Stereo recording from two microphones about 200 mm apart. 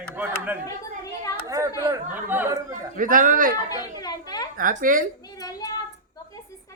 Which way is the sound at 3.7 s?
20° left (ahead or behind).